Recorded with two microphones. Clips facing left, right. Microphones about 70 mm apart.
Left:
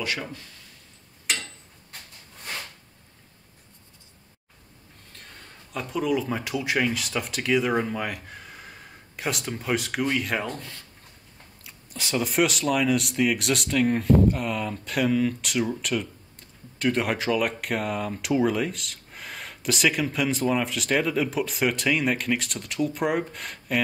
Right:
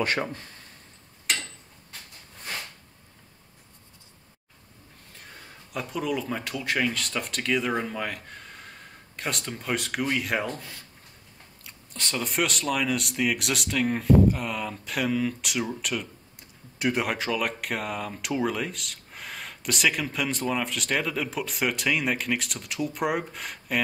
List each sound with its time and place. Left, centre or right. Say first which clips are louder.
0.0 s speech: right 4 dB; right
5.1 s speech: even; centre
16.3 s a sound: even; centre
17.0 s speech: left 3 dB; centre